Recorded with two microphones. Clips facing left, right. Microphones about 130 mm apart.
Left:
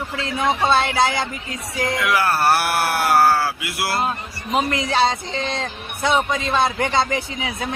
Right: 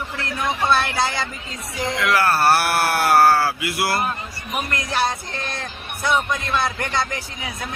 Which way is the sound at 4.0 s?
25° left (ahead or behind).